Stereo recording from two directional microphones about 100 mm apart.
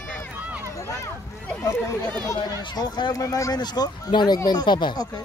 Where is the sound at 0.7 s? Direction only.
30° left (ahead or behind).